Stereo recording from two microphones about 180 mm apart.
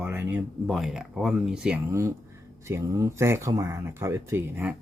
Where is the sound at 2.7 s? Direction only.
15° right (ahead or behind).